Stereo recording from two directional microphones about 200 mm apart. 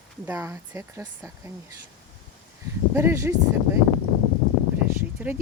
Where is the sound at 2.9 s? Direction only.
15° right (ahead or behind).